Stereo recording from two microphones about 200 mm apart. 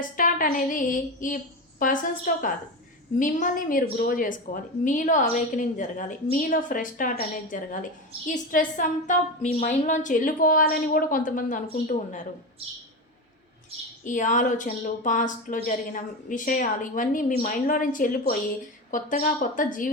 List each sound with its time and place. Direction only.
0.2 s a woman's voice: 45° left (ahead or behind)
14.0 s a woman's voice: 40° left (ahead or behind)